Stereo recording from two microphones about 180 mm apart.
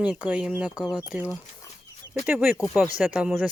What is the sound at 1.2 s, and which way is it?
Speech, 20° left (ahead or behind).